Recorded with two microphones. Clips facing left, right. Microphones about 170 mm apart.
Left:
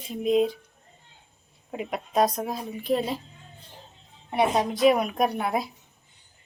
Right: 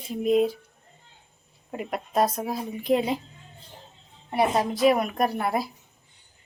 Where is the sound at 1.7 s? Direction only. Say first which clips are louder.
Even; centre (ahead or behind); by 3.2 s 15° right (ahead or behind).